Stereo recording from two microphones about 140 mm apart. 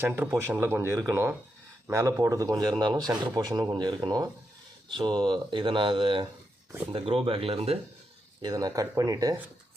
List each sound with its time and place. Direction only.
0.0 s a man's voice: 15° right (ahead or behind); by 7.8 s 45° right (ahead or behind)
8.4 s speech: 30° right (ahead or behind)